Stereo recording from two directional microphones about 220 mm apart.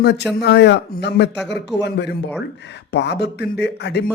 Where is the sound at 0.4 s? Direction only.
50° left (ahead or behind).